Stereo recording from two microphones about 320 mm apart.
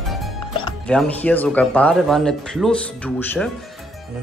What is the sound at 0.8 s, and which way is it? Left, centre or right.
Speech, centre.